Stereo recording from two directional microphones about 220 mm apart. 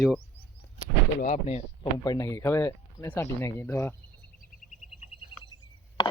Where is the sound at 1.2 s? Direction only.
35° left (ahead or behind).